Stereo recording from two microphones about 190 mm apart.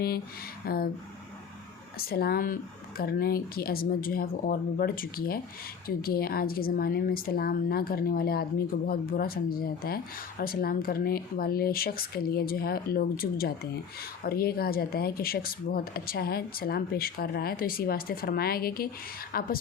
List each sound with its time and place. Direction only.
0.6 s speech: 50° left (ahead or behind)
2.0 s speech: 50° left (ahead or behind)